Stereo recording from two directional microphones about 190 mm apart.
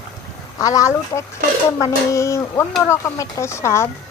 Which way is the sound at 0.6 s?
15° left (ahead or behind).